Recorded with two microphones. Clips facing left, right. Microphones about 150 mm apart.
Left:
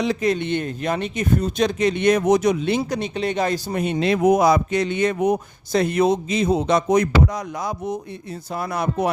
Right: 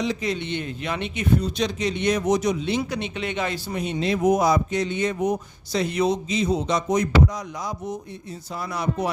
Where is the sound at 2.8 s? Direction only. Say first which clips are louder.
Left 4 dB; 40° left (ahead or behind).